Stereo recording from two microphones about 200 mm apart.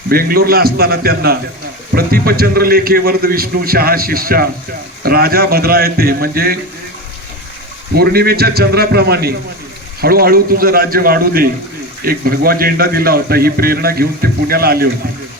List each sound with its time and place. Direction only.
0.1 s a man's voice: 50° right (ahead or behind)
7.9 s a man's voice: 50° right (ahead or behind)